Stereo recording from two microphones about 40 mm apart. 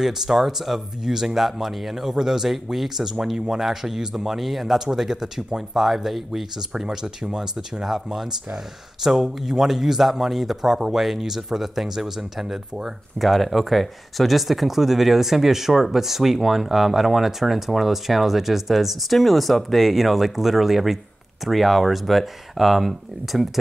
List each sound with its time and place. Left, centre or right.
0.0 s speech: centre
7.8 s speech: centre